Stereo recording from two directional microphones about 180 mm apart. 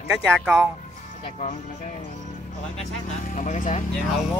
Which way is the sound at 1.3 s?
40° left (ahead or behind).